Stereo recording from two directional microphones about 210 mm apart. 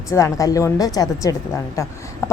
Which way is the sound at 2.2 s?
15° left (ahead or behind).